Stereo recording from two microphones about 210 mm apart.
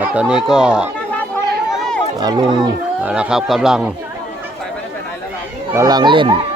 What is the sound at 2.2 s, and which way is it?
Speech, 20° right (ahead or behind).